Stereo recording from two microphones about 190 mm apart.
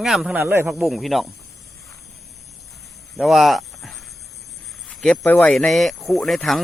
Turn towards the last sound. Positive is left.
turn(degrees=0)  # may be behind; listen again after turning